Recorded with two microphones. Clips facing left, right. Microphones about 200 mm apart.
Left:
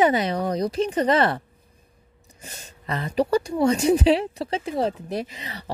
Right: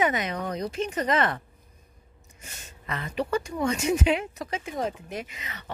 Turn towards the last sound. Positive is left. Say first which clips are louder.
# left 6 dB
turn(degrees=35)  # may be behind; listen again after turning